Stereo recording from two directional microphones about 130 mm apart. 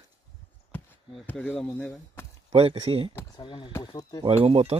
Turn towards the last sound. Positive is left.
turn(degrees=-50)  # may be behind; listen again after turning